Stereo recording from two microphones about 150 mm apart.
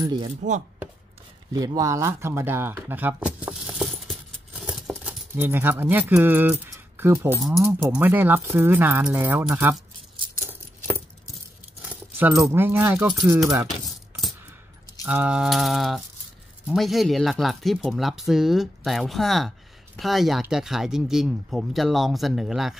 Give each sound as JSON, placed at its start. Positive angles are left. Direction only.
{"t": 0.0, "sound": "speech", "side_deg": -30}
{"t": 1.5, "sound": "a sound", "side_deg": -25}
{"t": 5.3, "sound": "speech", "side_deg": -15}
{"t": 12.2, "sound": "speech", "side_deg": -20}
{"t": 13.7, "sound": "keys jangling", "side_deg": 0}
{"t": 15.0, "sound": "speech", "side_deg": -5}